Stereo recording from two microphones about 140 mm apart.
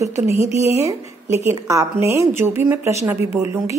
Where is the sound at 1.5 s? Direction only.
20° right (ahead or behind).